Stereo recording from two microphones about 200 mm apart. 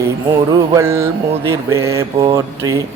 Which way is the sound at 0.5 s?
15° right (ahead or behind).